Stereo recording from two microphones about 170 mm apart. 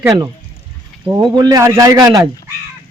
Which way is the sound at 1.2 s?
25° right (ahead or behind).